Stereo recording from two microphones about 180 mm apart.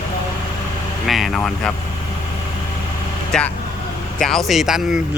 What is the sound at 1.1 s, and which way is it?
Speech, centre (ahead or behind).